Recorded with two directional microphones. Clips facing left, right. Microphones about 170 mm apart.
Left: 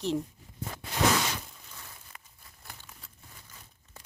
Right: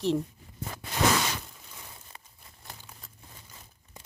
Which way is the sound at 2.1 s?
30° right (ahead or behind).